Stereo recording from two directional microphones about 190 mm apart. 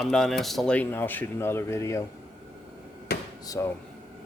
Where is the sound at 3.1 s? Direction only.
60° left (ahead or behind).